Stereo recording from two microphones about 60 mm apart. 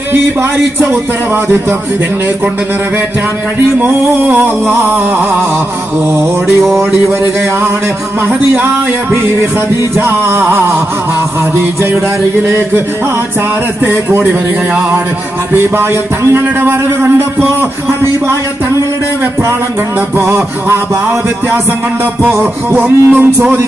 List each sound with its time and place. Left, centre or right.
0.1 s a man's voice: right
4.2 s a man's voice: right
6.6 s speech: centre
9.1 s music: right
13.8 s a man's voice: right
15.5 s a man's voice: right
20.2 s a man's voice: right
22.3 s a man's voice: right